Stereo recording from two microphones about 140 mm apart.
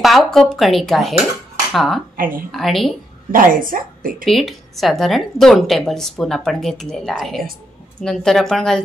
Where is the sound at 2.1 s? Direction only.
85° right.